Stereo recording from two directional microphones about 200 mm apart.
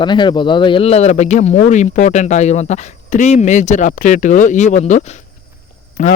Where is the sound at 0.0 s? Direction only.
25° left (ahead or behind).